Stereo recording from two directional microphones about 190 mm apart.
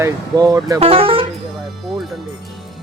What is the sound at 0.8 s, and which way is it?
Speech, 30° right (ahead or behind).